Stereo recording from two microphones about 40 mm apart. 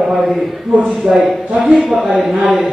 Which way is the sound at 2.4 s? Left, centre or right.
Right.